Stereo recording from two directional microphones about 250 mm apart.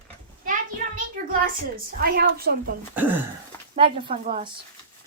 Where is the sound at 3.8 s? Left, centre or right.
Right.